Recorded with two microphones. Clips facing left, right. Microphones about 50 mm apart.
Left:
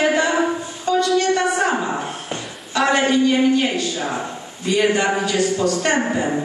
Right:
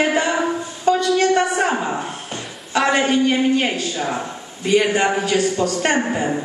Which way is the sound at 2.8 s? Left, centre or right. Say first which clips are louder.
Even; centre.